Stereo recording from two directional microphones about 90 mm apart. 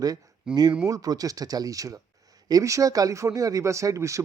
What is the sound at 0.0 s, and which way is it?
Speech, 45° right (ahead or behind).